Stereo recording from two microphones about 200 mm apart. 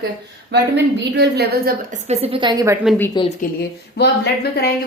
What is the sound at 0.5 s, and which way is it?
A woman's voice, 60° right (ahead or behind).